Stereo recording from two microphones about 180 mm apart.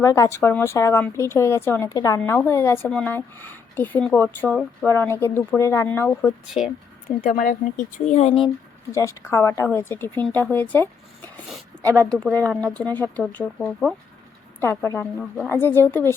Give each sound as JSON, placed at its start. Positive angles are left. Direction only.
{"t": 0.0, "sound": "a woman's voice", "side_deg": 15}
{"t": 6.6, "sound": "speech", "side_deg": -5}
{"t": 7.3, "sound": "speech", "side_deg": 50}
{"t": 8.9, "sound": "a woman's voice", "side_deg": 15}
{"t": 14.6, "sound": "a woman's voice", "side_deg": 15}